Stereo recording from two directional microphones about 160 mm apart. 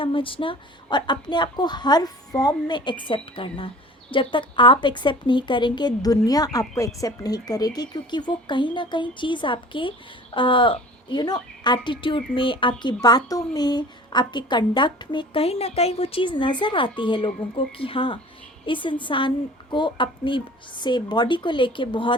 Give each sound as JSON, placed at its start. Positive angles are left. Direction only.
{"t": 0.0, "sound": "a woman's voice", "side_deg": 35}